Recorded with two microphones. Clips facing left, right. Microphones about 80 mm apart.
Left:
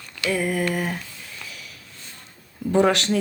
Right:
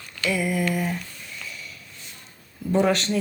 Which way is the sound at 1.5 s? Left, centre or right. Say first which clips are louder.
Right 2 dB; left.